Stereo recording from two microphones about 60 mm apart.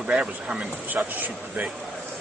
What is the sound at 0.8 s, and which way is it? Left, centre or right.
Speech, right.